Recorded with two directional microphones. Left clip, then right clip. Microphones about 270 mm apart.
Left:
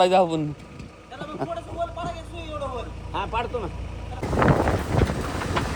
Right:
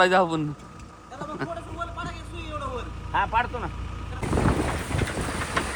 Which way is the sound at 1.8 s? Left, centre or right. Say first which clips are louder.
Left 6 dB; right.